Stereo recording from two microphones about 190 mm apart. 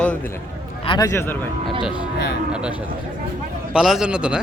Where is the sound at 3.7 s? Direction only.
5° right (ahead or behind).